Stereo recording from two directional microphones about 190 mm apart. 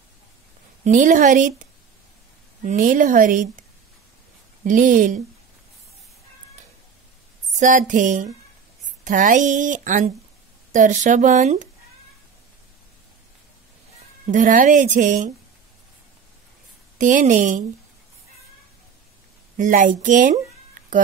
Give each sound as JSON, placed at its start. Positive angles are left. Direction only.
{"t": 0.8, "sound": "a woman's voice", "side_deg": -45}
{"t": 2.6, "sound": "a woman's voice", "side_deg": -45}
{"t": 4.6, "sound": "a woman's voice", "side_deg": -45}
{"t": 7.5, "sound": "a woman's voice", "side_deg": -40}
{"t": 14.2, "sound": "a woman's voice", "side_deg": -40}
{"t": 17.0, "sound": "speech", "side_deg": -40}
{"t": 19.5, "sound": "speech", "side_deg": -45}